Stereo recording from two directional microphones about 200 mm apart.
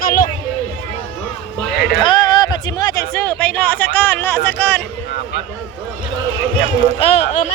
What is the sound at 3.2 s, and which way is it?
Speech, 10° left (ahead or behind).